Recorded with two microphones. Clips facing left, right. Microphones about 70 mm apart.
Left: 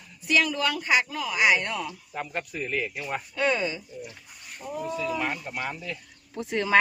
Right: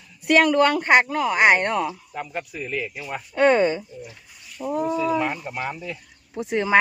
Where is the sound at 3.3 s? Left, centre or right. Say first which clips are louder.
Right 10 dB; right.